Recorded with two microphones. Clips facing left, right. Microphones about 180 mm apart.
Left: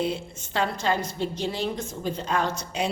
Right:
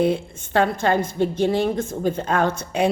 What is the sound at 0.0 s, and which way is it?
A woman's voice, 55° right (ahead or behind).